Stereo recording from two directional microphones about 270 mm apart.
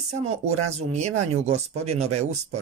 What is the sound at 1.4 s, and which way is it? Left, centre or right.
Speech, right.